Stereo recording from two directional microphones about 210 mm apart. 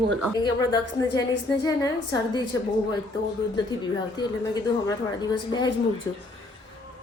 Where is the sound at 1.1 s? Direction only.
20° left (ahead or behind).